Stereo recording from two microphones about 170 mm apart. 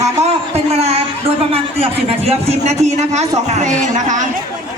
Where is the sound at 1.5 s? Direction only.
35° right (ahead or behind).